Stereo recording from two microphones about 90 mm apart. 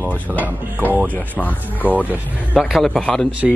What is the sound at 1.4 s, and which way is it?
Speech, 20° left (ahead or behind).